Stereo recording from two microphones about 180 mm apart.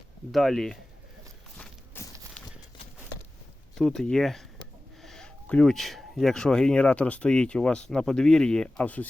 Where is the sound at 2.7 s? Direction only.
25° left (ahead or behind).